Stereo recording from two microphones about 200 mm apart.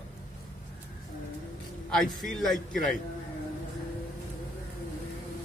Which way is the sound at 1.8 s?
5° left (ahead or behind).